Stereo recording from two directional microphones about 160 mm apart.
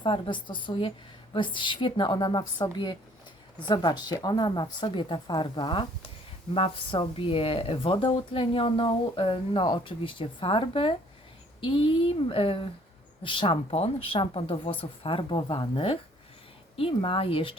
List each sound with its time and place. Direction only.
0.0 s a woman's voice: 30° left (ahead or behind)